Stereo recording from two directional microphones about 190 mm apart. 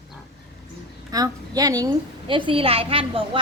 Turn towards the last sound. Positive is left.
turn(degrees=-30)  # may be behind; listen again after turning